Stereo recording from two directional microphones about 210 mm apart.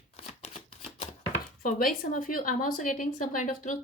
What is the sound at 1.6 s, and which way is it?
Speech, 40° left (ahead or behind).